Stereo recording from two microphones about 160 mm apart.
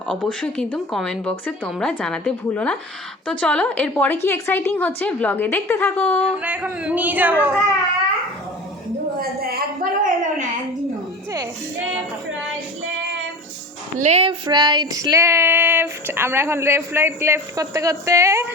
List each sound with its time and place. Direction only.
0.1 s a woman's voice: 5° left (ahead or behind)
6.4 s female singing: 10° right (ahead or behind)
9.2 s a sound: 70° right (ahead or behind)
14.0 s speech: 40° right (ahead or behind)
14.4 s female singing: 25° right (ahead or behind)